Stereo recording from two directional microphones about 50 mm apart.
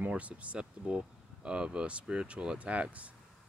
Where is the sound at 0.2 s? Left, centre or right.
Right.